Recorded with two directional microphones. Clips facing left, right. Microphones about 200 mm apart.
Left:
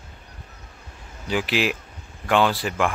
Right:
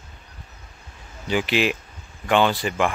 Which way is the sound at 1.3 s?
Centre (ahead or behind).